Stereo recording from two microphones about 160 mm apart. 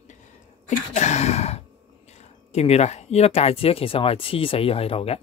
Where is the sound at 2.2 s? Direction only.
40° left (ahead or behind).